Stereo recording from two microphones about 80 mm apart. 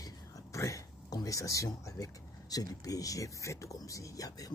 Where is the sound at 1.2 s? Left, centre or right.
Left.